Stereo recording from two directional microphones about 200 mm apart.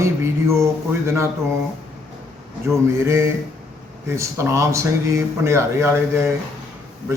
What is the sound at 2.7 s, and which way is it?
Speech, 15° right (ahead or behind).